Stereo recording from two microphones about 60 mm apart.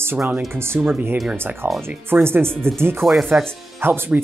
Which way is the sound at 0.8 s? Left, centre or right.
Centre.